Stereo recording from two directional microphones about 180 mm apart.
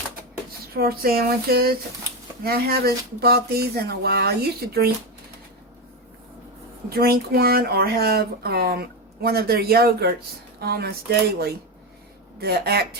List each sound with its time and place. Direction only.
0.7 s speech: 55° right (ahead or behind)
6.9 s speech: 60° right (ahead or behind)
12.4 s speech: 60° right (ahead or behind)